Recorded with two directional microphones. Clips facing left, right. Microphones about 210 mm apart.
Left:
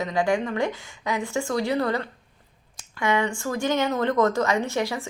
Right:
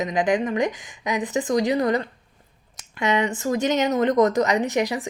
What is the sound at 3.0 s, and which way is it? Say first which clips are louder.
A woman's voice: right 2 dB; 20° right (ahead or behind).